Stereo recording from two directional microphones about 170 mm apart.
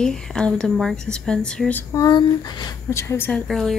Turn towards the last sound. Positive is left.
turn(degrees=5)  # may be behind; listen again after turning